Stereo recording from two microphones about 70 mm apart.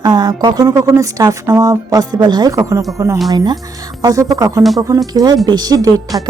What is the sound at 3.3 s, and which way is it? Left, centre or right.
Music, right.